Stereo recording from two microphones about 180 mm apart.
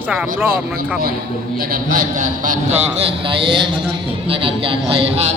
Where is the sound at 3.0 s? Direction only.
30° right (ahead or behind).